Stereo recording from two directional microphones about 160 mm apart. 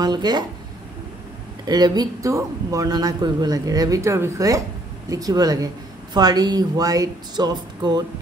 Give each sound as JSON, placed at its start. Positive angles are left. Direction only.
{"t": 0.0, "sound": "speech", "side_deg": -25}
{"t": 1.7, "sound": "speech", "side_deg": -25}